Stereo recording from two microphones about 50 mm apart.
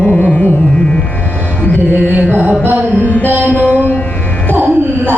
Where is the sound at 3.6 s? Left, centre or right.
Left.